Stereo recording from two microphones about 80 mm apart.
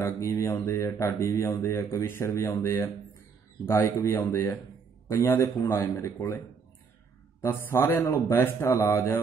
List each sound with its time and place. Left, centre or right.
0.0 s a man's voice: left
7.4 s a man's voice: left